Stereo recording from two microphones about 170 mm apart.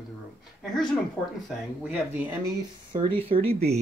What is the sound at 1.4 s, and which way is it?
Speech, 5° right (ahead or behind).